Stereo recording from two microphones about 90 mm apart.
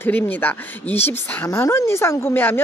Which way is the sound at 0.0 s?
20° left (ahead or behind).